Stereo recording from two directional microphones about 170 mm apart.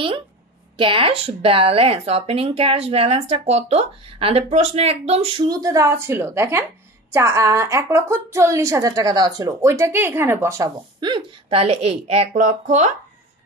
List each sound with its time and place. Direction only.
0.7 s speech: 30° right (ahead or behind)
5.5 s a woman's voice: 20° right (ahead or behind)
11.0 s speech: 30° right (ahead or behind); by 12.9 s 45° right (ahead or behind)